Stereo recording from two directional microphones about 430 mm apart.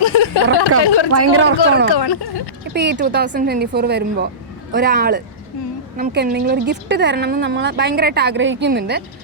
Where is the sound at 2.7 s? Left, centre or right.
Right.